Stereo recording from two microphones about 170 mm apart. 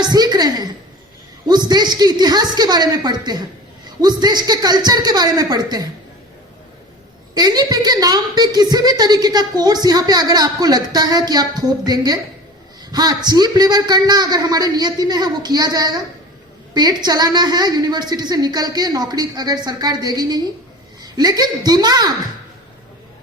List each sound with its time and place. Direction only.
0.0 s a woman's voice: 25° right (ahead or behind)
7.3 s a woman's voice: 25° right (ahead or behind)